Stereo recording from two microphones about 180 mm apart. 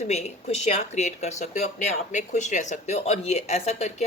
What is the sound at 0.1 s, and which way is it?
Speech, 35° left (ahead or behind).